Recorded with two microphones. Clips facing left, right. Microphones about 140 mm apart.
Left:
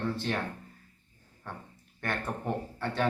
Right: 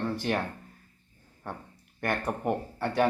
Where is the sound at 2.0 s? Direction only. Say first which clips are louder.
Right 4 dB; 15° right (ahead or behind).